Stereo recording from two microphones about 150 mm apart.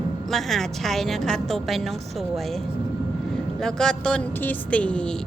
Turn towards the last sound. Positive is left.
turn(degrees=5)  # may be behind; listen again after turning